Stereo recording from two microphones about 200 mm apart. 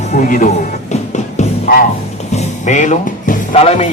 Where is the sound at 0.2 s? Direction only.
40° left (ahead or behind).